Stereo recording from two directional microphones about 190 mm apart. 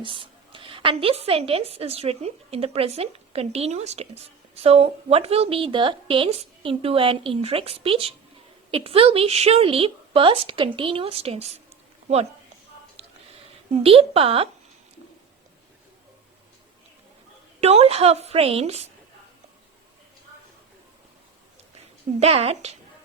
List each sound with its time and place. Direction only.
0.0 s a woman's voice: 25° right (ahead or behind)
13.0 s a sound: 35° right (ahead or behind)
13.8 s a woman's voice: 30° right (ahead or behind)
17.6 s a woman's voice: 35° right (ahead or behind)
22.2 s a woman's voice: 35° right (ahead or behind)